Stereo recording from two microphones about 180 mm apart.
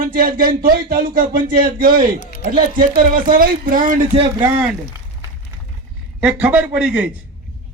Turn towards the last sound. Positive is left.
turn(degrees=-5)  # may be behind; listen again after turning